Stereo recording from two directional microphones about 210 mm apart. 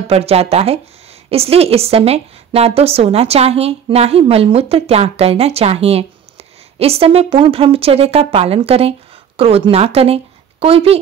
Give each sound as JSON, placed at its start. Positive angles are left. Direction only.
{"t": 0.1, "sound": "a woman's voice", "side_deg": -30}